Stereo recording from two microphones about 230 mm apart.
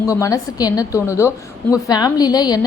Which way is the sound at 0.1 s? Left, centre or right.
Centre.